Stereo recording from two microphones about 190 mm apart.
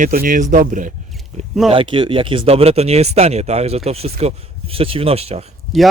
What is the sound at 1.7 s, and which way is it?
Speech, 25° right (ahead or behind).